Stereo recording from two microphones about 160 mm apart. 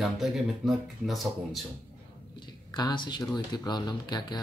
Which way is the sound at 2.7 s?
25° left (ahead or behind).